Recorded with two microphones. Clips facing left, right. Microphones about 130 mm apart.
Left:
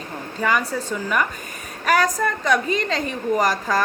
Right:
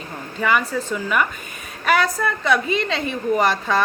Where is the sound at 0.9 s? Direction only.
40° left (ahead or behind).